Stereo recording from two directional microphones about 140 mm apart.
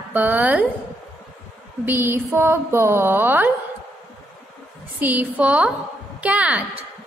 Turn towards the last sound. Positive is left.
turn(degrees=-10)  # may be behind; listen again after turning